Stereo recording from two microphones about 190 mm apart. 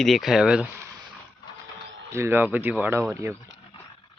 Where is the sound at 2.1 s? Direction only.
15° right (ahead or behind).